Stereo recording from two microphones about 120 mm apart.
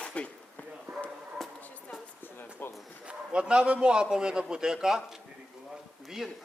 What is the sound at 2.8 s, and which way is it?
A man's voice, 10° right (ahead or behind).